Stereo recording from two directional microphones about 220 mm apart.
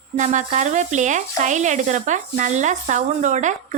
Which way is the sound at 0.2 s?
35° right (ahead or behind).